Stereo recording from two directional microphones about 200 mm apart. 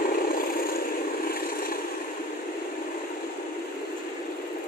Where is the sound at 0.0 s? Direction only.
45° left (ahead or behind).